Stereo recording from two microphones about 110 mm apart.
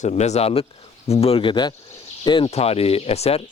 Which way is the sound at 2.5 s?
70° left (ahead or behind).